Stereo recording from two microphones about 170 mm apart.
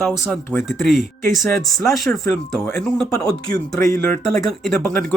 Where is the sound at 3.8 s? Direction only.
15° left (ahead or behind).